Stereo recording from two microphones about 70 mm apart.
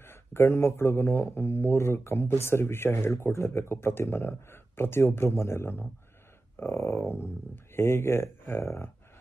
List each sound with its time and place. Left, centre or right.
0.0 s speech: left